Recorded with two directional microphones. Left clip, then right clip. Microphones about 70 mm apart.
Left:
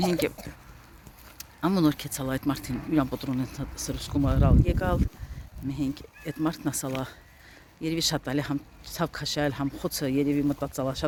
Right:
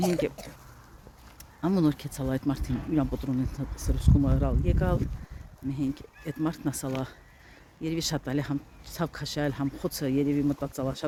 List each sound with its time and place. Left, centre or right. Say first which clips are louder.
0.4 s speech: left 1 dB; left
1.7 s speech: left 1 dB; right
2.9 s speech: left 2 dB; right
5.6 s speech: left 1 dB; right
7.8 s speech: left 3 dB; right